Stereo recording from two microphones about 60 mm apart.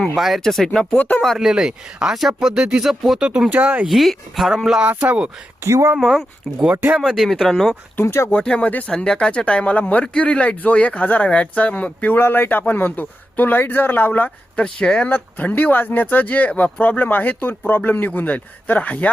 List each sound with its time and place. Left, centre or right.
0.2 s speech: centre
0.9 s speech: left
1.4 s speech: centre
3.5 s speech: right
3.8 s speech: centre
4.8 s speech: right
5.6 s speech: right
6.0 s speech: centre
7.3 s speech: centre
7.9 s speech: left
8.3 s a man's voice: centre
15.1 s a man's voice: left